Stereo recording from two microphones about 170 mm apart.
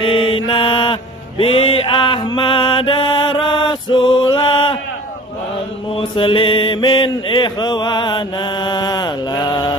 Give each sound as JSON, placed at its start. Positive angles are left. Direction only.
{"t": 0.0, "sound": "mantra", "side_deg": 30}
{"t": 5.9, "sound": "mantra", "side_deg": 30}